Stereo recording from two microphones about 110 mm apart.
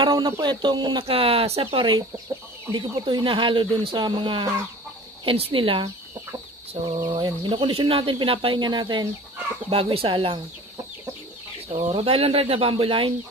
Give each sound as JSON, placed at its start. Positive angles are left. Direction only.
{"t": 0.0, "sound": "speech", "side_deg": -45}
{"t": 9.7, "sound": "speech", "side_deg": -55}
{"t": 11.7, "sound": "speech", "side_deg": -60}